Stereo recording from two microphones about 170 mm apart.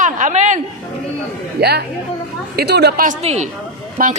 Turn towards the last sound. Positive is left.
turn(degrees=-50)  # may be behind; listen again after turning